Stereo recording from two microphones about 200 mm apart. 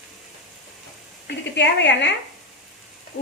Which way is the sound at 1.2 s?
60° left (ahead or behind).